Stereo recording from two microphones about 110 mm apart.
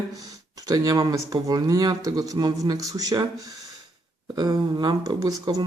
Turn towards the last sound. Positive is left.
turn(degrees=-35)  # may be behind; listen again after turning